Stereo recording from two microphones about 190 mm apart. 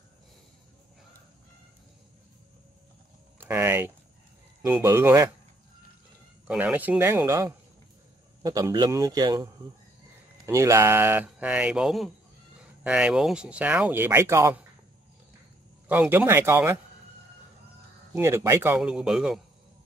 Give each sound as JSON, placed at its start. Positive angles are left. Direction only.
{"t": 3.3, "sound": "a sound", "side_deg": -10}
{"t": 4.6, "sound": "speech", "side_deg": -10}
{"t": 6.4, "sound": "a man's voice", "side_deg": -5}
{"t": 15.9, "sound": "speech", "side_deg": -10}
{"t": 18.1, "sound": "speech", "side_deg": -15}